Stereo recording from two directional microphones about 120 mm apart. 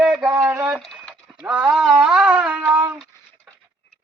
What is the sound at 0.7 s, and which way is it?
Speech, 5° right (ahead or behind).